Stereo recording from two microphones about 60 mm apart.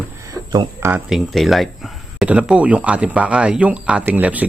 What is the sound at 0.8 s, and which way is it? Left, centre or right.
Speech, right.